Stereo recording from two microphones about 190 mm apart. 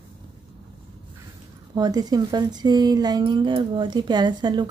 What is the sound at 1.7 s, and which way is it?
Speech, 20° right (ahead or behind).